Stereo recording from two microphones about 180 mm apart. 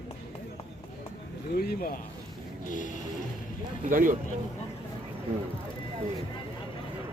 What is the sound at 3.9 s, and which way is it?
Speech, 50° right (ahead or behind).